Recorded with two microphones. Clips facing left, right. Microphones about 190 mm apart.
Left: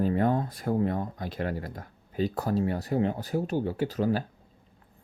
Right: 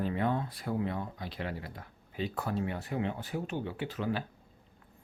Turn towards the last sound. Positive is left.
turn(degrees=40)  # may be behind; listen again after turning